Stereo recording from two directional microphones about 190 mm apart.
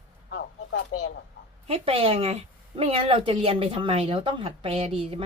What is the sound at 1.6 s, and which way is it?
A woman's voice, 30° right (ahead or behind).